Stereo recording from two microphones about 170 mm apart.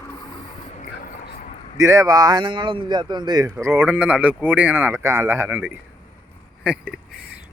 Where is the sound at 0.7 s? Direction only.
50° left (ahead or behind).